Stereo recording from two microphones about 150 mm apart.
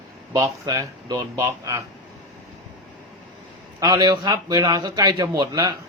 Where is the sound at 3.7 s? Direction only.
25° right (ahead or behind).